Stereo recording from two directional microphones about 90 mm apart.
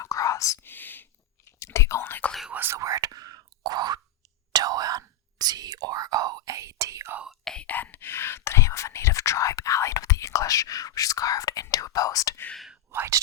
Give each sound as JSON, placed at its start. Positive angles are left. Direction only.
{"t": 0.0, "sound": "whispering", "side_deg": 40}
{"t": 0.6, "sound": "whispering", "side_deg": 20}
{"t": 1.5, "sound": "whispering", "side_deg": 30}
{"t": 2.5, "sound": "whispering", "side_deg": -25}
{"t": 2.7, "sound": "whispering", "side_deg": -40}
{"t": 7.3, "sound": "whispering", "side_deg": 5}
{"t": 12.9, "sound": "speech", "side_deg": -25}